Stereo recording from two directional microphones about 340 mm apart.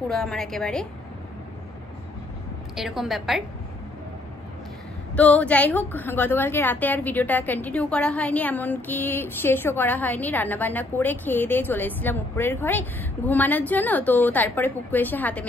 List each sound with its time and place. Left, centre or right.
0.1 s a woman's voice: centre
2.7 s a woman's voice: centre
5.1 s a woman's voice: centre